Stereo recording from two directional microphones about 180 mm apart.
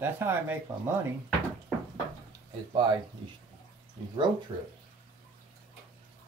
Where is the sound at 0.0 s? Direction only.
10° right (ahead or behind).